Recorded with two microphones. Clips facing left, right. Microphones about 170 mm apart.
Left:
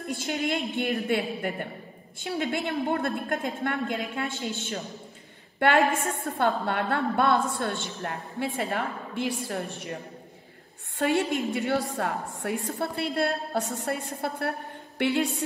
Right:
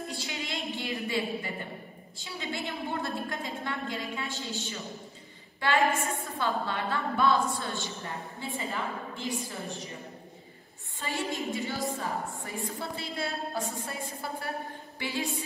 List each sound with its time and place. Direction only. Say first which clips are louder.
0.1 s a woman's voice: left 8 dB; 55° left (ahead or behind)
11.0 s a woman's voice: left 8 dB; 60° left (ahead or behind)
15.0 s music: left 8 dB; 70° left (ahead or behind)